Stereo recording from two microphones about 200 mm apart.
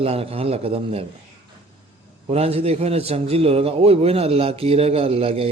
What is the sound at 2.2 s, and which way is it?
A man's voice, 30° right (ahead or behind).